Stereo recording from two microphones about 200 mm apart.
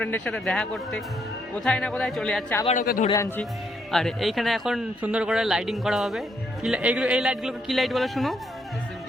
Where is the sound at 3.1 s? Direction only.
15° left (ahead or behind).